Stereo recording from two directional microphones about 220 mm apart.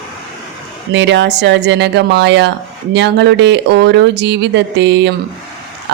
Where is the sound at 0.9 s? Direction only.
55° right (ahead or behind).